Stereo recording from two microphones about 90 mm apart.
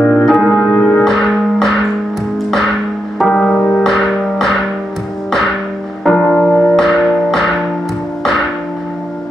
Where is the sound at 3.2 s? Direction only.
10° left (ahead or behind).